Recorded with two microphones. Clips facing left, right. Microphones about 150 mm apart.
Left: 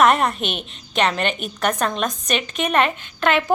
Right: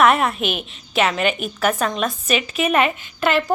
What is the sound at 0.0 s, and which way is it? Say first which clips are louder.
A woman's voice: even; centre (ahead or behind).